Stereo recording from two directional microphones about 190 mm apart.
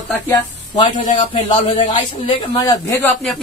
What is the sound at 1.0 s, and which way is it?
Speech, 35° left (ahead or behind).